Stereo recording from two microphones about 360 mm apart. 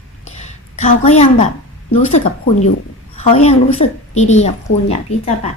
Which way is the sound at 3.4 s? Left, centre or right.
Centre.